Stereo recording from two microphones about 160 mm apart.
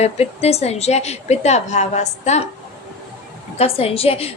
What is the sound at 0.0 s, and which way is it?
A woman's voice, 40° left (ahead or behind).